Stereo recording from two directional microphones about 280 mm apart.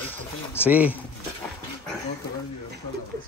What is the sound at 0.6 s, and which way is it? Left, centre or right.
Speech, centre.